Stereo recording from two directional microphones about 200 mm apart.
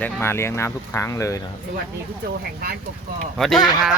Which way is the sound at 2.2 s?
50° right (ahead or behind).